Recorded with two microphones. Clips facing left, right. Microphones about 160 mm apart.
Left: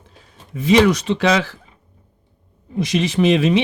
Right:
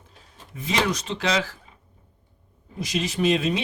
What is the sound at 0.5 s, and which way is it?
Speech, 75° left (ahead or behind).